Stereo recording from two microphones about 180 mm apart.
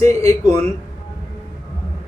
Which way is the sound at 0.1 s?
15° left (ahead or behind).